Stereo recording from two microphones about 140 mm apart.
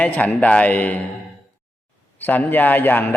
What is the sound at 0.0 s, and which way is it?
A man's voice, 10° left (ahead or behind).